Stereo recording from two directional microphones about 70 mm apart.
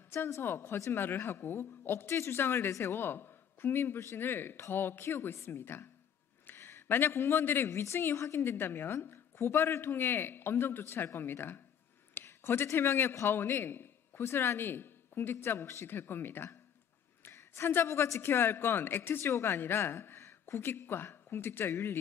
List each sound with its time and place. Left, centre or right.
0.1 s a woman's voice: left
12.1 s a sound: left
12.7 s a woman's voice: left